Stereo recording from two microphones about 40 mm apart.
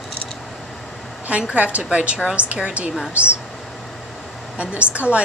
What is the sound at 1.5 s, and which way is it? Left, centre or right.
A woman's voice, right.